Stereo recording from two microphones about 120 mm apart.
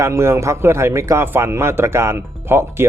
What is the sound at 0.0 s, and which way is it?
A man's voice, 20° right (ahead or behind).